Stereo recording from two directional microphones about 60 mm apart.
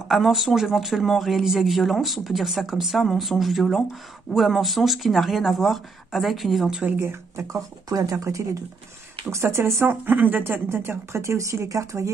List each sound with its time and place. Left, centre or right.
0.1 s speech: centre
7.0 s speech: right
7.4 s speech: right
9.3 s speech: right
9.8 s speech: right